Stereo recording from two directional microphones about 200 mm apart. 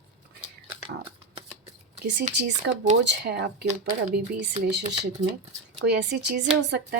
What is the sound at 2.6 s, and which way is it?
A woman's voice, 60° right (ahead or behind).